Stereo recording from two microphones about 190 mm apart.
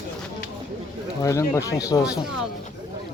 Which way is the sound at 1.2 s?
15° left (ahead or behind).